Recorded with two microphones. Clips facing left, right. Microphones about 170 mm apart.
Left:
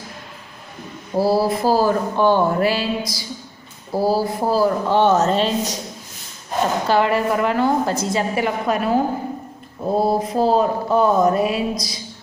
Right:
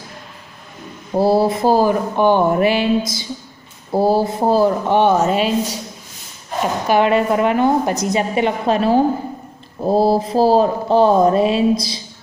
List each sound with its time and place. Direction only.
1.1 s speech: 25° right (ahead or behind)
6.9 s speech: 20° right (ahead or behind)